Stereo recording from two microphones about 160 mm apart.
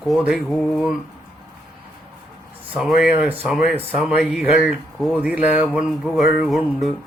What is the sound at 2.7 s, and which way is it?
Speech, centre (ahead or behind).